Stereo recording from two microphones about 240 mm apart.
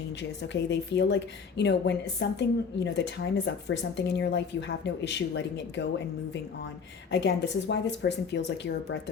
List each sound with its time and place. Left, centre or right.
0.2 s a woman's voice: left
7.1 s a woman's voice: left